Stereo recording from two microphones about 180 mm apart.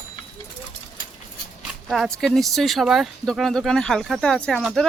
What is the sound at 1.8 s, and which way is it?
Speech, centre (ahead or behind).